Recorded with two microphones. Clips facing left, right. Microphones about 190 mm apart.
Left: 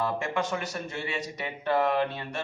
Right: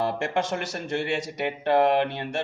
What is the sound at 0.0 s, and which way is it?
Speech, 80° right.